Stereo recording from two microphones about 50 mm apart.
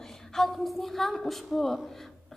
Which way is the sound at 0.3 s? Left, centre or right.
Centre.